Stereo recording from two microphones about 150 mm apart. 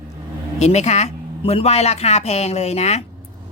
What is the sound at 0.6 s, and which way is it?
Speech, 45° left (ahead or behind).